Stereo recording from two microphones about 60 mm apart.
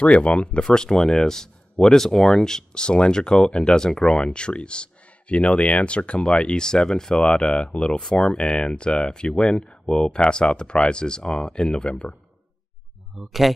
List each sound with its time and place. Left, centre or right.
0.0 s speech: centre
13.2 s speech: centre